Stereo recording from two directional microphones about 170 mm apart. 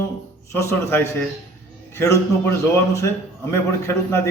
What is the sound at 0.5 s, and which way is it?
A man's voice, 15° left (ahead or behind).